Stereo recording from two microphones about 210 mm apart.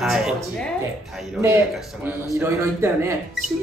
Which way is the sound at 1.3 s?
15° right (ahead or behind).